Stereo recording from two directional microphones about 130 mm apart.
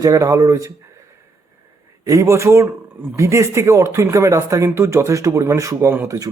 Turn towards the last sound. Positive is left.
turn(degrees=-25)  # may be behind; listen again after turning